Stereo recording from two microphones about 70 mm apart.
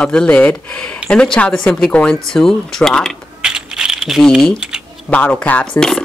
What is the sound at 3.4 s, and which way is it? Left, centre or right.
Mechanisms, centre.